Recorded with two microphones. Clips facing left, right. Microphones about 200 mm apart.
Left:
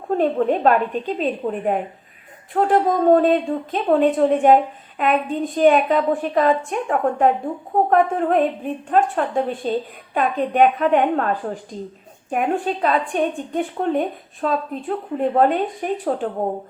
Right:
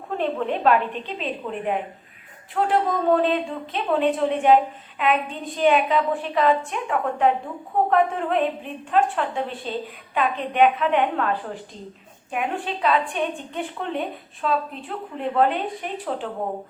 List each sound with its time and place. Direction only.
0.2 s a woman's voice: 45° left (ahead or behind)